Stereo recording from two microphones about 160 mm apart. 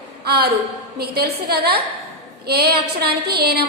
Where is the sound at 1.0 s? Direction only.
80° right.